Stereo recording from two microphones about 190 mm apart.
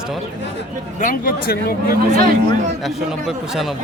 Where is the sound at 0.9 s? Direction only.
45° left (ahead or behind).